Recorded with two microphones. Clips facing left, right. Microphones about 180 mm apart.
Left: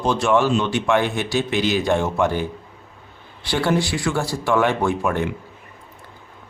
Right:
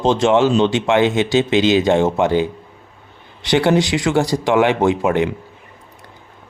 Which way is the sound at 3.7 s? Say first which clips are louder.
Right 5 dB; 90° right.